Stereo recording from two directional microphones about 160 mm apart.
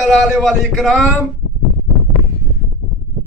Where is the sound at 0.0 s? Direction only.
5° left (ahead or behind).